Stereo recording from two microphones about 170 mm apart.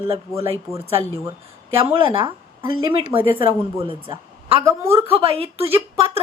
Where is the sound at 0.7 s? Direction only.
Centre (ahead or behind).